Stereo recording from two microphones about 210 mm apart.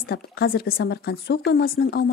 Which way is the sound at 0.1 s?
50° left (ahead or behind).